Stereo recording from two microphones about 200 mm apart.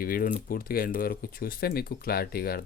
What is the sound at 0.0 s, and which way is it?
Speech, 45° left (ahead or behind).